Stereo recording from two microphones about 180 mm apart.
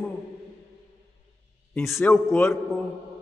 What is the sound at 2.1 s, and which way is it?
Speech, 10° left (ahead or behind).